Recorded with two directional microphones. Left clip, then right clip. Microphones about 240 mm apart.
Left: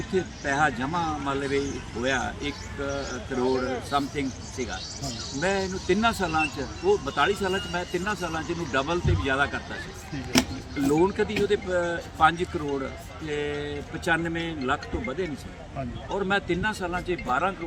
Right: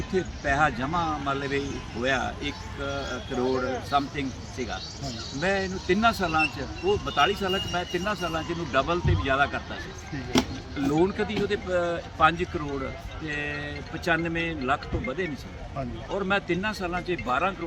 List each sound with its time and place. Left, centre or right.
0.4 s speech: centre
3.0 s speech: left
3.9 s speech: centre
10.8 s speech: centre